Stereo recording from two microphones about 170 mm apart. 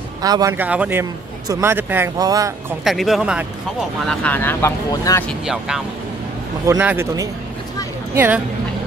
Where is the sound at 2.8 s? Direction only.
Centre (ahead or behind).